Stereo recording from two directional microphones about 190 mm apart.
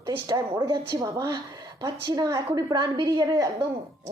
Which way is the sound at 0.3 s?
15° right (ahead or behind).